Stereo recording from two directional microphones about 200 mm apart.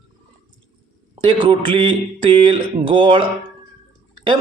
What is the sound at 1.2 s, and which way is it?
A man's voice, 25° right (ahead or behind).